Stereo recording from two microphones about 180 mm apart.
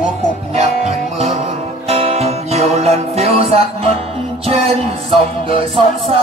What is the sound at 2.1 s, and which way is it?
Music, 35° right (ahead or behind).